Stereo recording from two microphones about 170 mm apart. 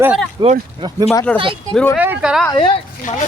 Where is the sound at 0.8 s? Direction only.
25° right (ahead or behind).